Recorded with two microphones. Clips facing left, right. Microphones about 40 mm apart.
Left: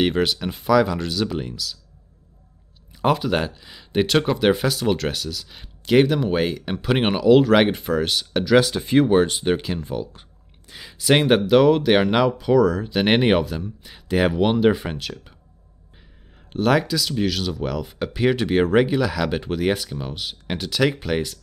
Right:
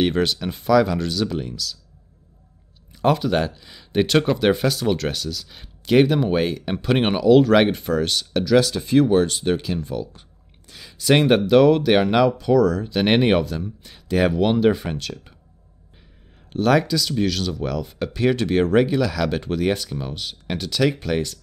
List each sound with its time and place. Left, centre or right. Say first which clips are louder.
0.0 s speech: even; centre
2.9 s speech: right 1 dB; centre
10.7 s a sound: left 3 dB; centre
11.0 s speech: right 1 dB; centre
16.4 s speech: right 1 dB; centre